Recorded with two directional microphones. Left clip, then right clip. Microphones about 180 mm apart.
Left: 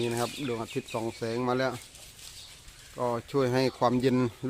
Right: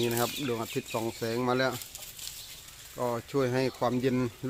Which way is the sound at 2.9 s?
15° left (ahead or behind).